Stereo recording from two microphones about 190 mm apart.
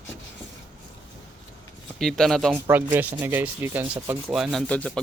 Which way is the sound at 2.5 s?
10° right (ahead or behind).